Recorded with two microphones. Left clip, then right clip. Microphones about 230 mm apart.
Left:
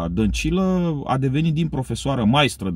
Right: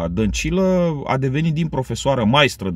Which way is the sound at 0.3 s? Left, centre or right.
Right.